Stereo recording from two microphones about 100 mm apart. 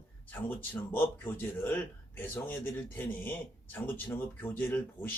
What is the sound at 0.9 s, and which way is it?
Speech, 20° left (ahead or behind).